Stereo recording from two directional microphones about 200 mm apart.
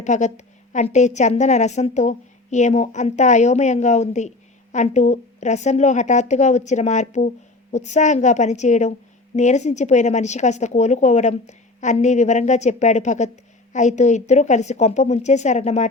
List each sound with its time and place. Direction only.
0.0 s a woman's voice: 35° left (ahead or behind)